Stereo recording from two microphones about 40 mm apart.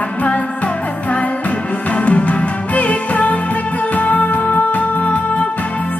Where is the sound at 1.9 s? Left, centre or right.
Left.